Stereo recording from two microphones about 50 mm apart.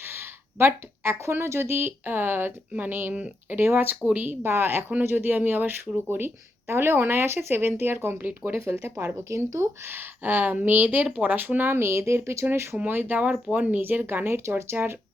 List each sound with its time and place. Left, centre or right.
0.0 s a woman's voice: right
8.2 s speech: right
8.5 s speech: right
9.3 s speech: right
9.8 s speech: right
12.9 s speech: right
13.2 s speech: right